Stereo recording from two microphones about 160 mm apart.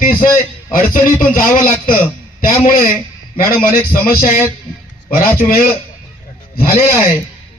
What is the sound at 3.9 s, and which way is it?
Speech, 55° left (ahead or behind).